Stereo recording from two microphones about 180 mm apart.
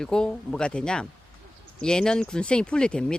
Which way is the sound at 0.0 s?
5° left (ahead or behind).